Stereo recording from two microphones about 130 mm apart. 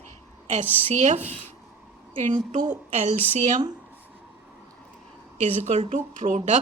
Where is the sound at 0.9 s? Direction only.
70° right (ahead or behind).